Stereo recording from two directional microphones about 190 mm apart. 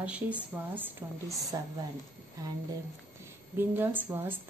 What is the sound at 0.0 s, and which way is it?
Speech, 5° right (ahead or behind).